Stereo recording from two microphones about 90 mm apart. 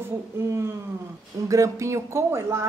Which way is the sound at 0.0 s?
30° right (ahead or behind).